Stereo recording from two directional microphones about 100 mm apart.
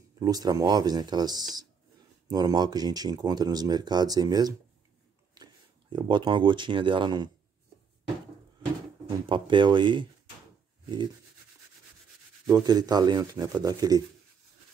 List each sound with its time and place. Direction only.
0.2 s speech: 40° right (ahead or behind)
9.2 s speech: 55° right (ahead or behind)
12.4 s speech: 40° right (ahead or behind)